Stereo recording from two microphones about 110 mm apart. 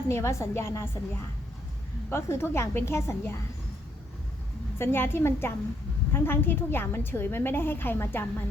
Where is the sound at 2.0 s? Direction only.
20° left (ahead or behind).